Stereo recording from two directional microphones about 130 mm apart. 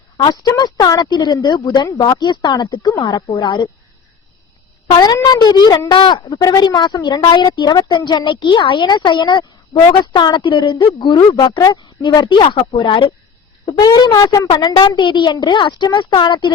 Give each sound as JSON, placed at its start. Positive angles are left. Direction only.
{"t": 0.2, "sound": "a woman's voice", "side_deg": 30}
{"t": 4.9, "sound": "a woman's voice", "side_deg": 30}
{"t": 6.2, "sound": "a woman's voice", "side_deg": 25}
{"t": 11.0, "sound": "a woman's voice", "side_deg": 30}
{"t": 13.8, "sound": "a woman's voice", "side_deg": 30}